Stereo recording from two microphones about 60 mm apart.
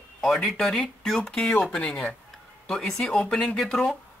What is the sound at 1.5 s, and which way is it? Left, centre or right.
Speech, left.